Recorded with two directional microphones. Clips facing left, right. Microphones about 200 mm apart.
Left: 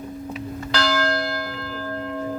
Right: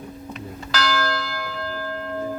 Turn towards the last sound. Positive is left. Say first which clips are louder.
# left 3 dB
turn(degrees=30)  # may be behind; listen again after turning